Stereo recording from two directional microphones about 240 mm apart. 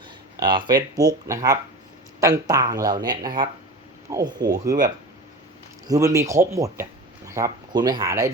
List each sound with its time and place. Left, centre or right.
0.3 s speech: centre
5.9 s speech: centre